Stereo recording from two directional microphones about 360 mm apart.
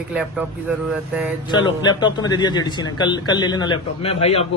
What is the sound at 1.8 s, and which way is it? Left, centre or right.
Speech, centre.